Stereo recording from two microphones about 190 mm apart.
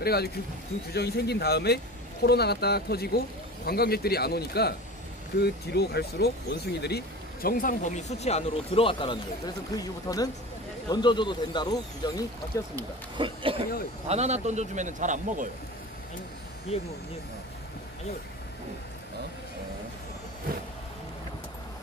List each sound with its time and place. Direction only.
0.0 s a man's voice: 55° left (ahead or behind); by 12.6 s 20° left (ahead or behind)
12.7 s a man's voice: 25° right (ahead or behind)
16.7 s speech: 35° left (ahead or behind)